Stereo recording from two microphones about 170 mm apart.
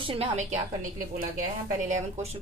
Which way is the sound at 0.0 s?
35° right (ahead or behind).